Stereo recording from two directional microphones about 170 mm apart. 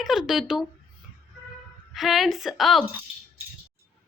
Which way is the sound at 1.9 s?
Centre (ahead or behind).